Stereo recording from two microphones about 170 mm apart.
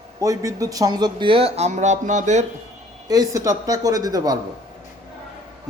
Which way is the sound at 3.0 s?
20° right (ahead or behind).